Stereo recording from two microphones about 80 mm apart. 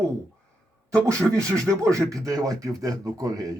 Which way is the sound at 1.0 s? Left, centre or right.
Right.